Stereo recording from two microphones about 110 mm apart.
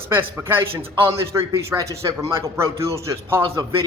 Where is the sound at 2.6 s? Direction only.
25° right (ahead or behind).